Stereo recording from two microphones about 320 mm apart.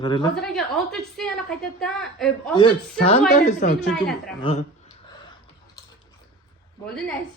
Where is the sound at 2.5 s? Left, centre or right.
Centre.